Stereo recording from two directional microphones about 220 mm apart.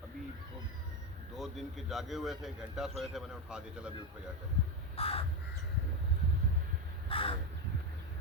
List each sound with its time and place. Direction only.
1.4 s speech: centre (ahead or behind)
4.9 s crow: 25° left (ahead or behind)
7.1 s crow: 25° left (ahead or behind)